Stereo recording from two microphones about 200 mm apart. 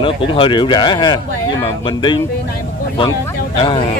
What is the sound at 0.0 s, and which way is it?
Speech, 25° left (ahead or behind).